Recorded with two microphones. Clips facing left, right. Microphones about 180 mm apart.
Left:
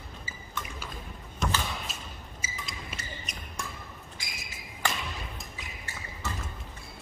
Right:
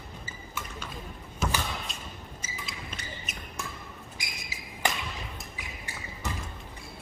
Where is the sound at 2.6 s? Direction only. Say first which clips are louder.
Right 2 dB; centre (ahead or behind).